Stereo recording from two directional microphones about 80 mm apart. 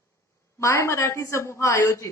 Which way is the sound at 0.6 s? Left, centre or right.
Left.